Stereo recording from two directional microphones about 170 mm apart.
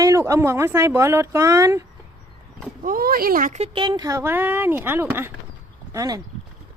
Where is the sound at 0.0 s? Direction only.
20° right (ahead or behind).